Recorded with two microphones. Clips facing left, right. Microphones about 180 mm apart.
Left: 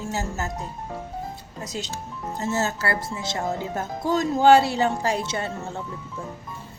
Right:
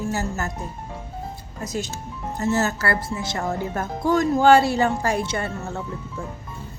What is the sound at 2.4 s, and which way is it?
Speech, 25° left (ahead or behind).